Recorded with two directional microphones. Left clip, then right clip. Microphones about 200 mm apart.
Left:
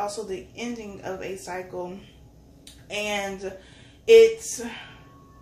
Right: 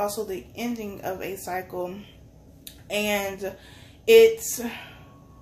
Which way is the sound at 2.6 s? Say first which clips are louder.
Right 3 dB; 45° right (ahead or behind).